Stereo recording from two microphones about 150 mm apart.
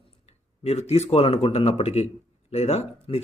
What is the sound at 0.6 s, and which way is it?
Speech, 45° left (ahead or behind).